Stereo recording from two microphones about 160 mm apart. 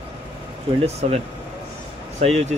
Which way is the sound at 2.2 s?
40° right (ahead or behind).